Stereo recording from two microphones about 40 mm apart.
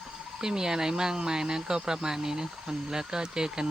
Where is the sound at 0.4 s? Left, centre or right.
Centre.